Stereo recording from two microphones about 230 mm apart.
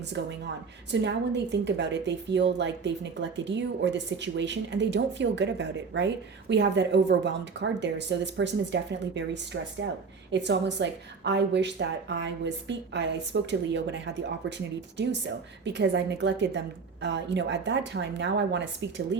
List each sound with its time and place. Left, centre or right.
0.2 s a woman's voice: right
15.6 s a woman's voice: right